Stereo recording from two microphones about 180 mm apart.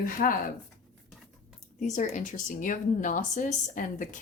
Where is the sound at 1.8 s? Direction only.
45° left (ahead or behind).